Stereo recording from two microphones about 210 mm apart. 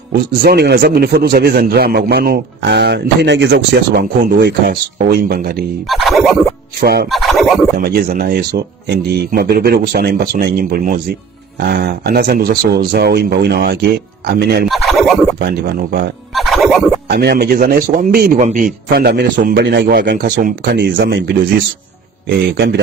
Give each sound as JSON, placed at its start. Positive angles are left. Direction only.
{"t": 0.1, "sound": "a man's voice", "side_deg": -50}
{"t": 5.9, "sound": "speech", "side_deg": 0}
{"t": 6.8, "sound": "a man's voice", "side_deg": -50}
{"t": 7.1, "sound": "speech", "side_deg": 0}
{"t": 7.7, "sound": "a man's voice", "side_deg": -45}
{"t": 14.7, "sound": "speech", "side_deg": 0}
{"t": 15.4, "sound": "a man's voice", "side_deg": -50}
{"t": 16.3, "sound": "a sound", "side_deg": 0}
{"t": 17.1, "sound": "a man's voice", "side_deg": -50}
{"t": 22.5, "sound": "a man's voice", "side_deg": -55}